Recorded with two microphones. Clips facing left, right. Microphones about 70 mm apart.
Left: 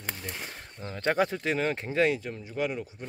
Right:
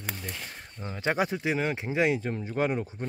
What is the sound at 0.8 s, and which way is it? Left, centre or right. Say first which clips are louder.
Speech: left 1 dB; centre.